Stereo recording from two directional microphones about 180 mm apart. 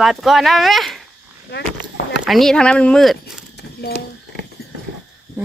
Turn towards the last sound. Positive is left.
turn(degrees=65)  # may be behind; listen again after turning